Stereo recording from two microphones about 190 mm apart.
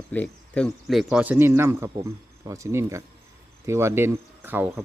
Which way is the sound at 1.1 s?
10° right (ahead or behind).